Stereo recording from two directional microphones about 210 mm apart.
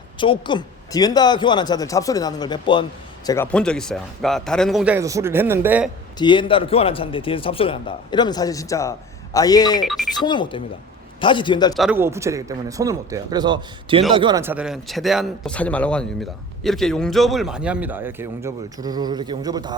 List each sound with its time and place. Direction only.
0.2 s a man's voice: 20° left (ahead or behind)
3.2 s a man's voice: 10° left (ahead or behind); by 5.9 s 10° right (ahead or behind)
6.1 s a man's voice: 20° left (ahead or behind)
9.8 s a man's voice: centre (ahead or behind)
10.2 s a man's voice: 20° left (ahead or behind)
11.7 s a man's voice: 5° right (ahead or behind); by 14.4 s 20° right (ahead or behind)
14.4 s a man's voice: 5° right (ahead or behind)